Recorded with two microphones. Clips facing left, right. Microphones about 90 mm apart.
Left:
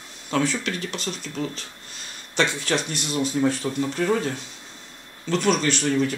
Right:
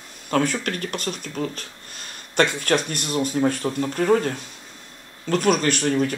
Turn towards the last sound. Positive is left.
turn(degrees=-50)  # may be behind; listen again after turning